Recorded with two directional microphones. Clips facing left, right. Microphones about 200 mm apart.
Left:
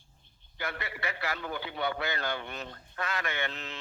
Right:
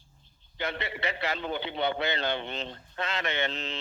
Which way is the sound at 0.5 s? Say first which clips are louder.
Right 4 dB; 25° right (ahead or behind).